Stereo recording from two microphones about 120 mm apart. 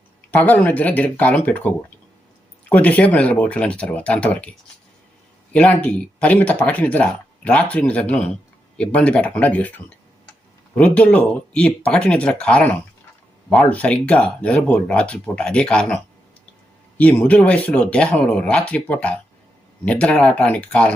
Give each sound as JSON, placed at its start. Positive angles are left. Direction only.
{"t": 0.3, "sound": "speech", "side_deg": 15}
{"t": 5.5, "sound": "speech", "side_deg": 10}
{"t": 17.0, "sound": "speech", "side_deg": 10}